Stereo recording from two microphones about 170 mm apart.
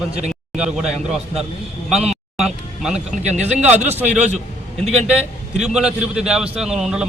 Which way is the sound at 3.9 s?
10° right (ahead or behind).